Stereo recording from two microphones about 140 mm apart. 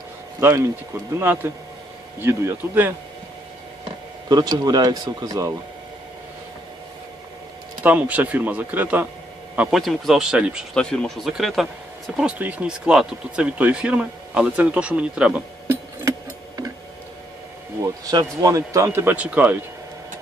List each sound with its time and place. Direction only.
0.4 s a man's voice: 20° right (ahead or behind)
4.3 s speech: 30° right (ahead or behind)
7.8 s a man's voice: 10° right (ahead or behind)
10.8 s speech: 5° left (ahead or behind); by 16.7 s 20° right (ahead or behind)
17.8 s a man's voice: 25° right (ahead or behind)